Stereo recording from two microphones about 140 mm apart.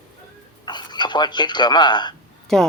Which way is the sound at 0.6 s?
30° left (ahead or behind).